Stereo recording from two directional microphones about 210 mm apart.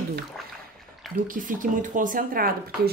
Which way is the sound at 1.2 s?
40° right (ahead or behind).